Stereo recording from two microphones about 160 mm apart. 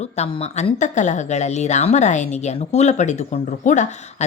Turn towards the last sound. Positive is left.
turn(degrees=50)  # may be behind; listen again after turning